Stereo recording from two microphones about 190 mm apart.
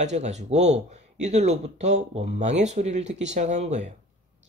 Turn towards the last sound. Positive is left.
turn(degrees=-35)  # may be behind; listen again after turning